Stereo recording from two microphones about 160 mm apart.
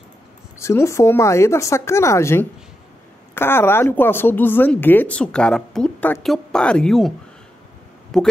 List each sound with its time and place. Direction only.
0.6 s speech: 15° left (ahead or behind); by 8.3 s centre (ahead or behind)